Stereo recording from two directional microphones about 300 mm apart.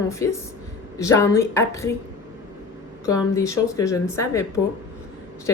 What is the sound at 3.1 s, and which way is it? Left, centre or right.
Speech, centre.